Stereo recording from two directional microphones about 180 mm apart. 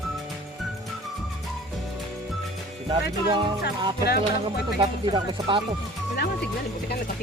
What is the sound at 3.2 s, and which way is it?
Speech, 25° right (ahead or behind).